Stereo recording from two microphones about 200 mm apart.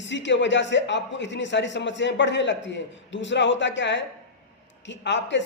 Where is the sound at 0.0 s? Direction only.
65° left (ahead or behind).